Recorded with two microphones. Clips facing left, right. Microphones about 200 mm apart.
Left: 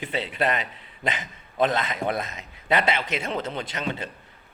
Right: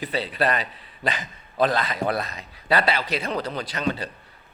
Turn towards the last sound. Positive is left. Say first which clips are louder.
# right 3 dB
turn(degrees=20)  # may be behind; listen again after turning